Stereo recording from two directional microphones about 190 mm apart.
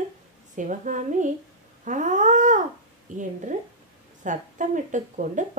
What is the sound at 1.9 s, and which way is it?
Cat, 40° right (ahead or behind).